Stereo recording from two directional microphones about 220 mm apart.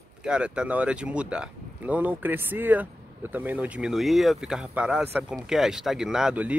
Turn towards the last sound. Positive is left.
turn(degrees=-5)  # may be behind; listen again after turning